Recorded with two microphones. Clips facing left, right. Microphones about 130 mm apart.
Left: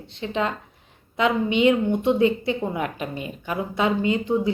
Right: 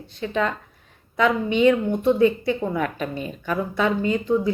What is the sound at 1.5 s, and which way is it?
Speech, 20° left (ahead or behind).